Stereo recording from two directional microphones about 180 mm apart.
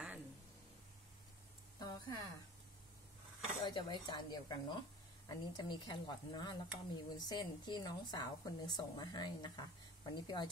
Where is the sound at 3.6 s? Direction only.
25° left (ahead or behind).